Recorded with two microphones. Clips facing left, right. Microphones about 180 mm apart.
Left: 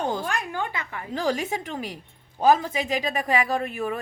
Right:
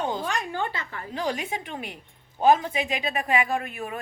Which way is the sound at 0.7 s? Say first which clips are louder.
Left 1 dB; 15° left (ahead or behind).